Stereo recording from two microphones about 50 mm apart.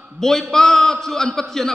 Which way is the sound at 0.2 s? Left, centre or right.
Centre.